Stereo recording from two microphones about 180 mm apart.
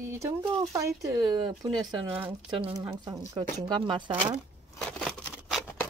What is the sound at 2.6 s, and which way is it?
Speech, 25° right (ahead or behind).